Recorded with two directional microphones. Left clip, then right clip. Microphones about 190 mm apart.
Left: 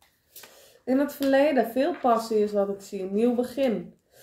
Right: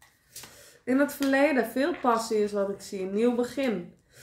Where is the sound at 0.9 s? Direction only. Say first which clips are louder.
Left 2 dB; 20° right (ahead or behind).